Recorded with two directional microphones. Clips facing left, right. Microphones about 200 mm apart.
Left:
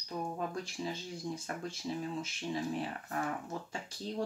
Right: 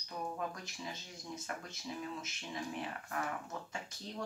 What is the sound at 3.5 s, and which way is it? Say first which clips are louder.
Speech: left 4 dB; 30° left (ahead or behind).